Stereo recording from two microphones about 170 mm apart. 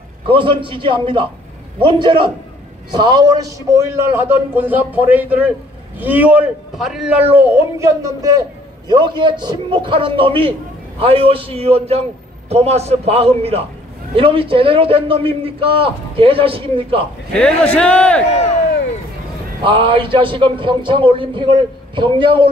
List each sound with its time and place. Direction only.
0.3 s a man's voice: 30° right (ahead or behind)
17.7 s a man's voice: 5° left (ahead or behind)
19.6 s a man's voice: 30° right (ahead or behind)